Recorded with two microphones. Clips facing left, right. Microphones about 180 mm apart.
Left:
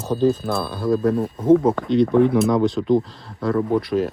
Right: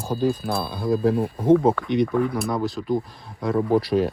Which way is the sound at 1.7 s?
30° right (ahead or behind).